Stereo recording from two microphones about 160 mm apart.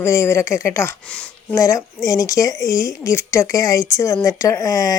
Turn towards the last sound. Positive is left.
turn(degrees=20)  # may be behind; listen again after turning